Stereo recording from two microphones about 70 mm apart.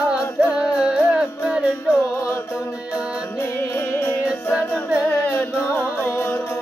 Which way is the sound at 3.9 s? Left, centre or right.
Left.